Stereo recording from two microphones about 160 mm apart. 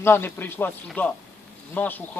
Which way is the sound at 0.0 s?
15° left (ahead or behind).